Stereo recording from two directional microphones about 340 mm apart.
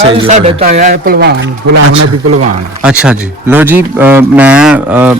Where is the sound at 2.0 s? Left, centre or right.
Right.